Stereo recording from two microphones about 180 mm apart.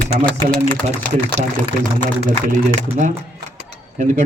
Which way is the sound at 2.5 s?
45° right (ahead or behind).